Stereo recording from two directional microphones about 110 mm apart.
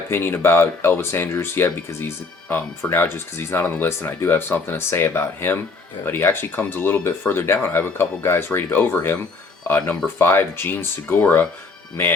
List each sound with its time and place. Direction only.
0.1 s speech: 20° left (ahead or behind)